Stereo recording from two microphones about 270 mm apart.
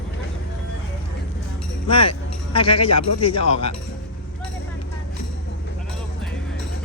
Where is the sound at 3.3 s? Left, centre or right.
Left.